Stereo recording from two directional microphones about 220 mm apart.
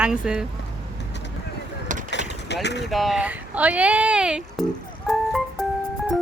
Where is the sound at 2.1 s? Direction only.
50° left (ahead or behind).